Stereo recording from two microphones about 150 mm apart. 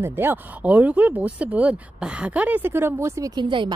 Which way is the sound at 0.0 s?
15° right (ahead or behind).